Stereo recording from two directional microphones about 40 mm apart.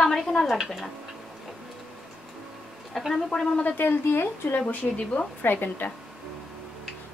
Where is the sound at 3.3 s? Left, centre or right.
Left.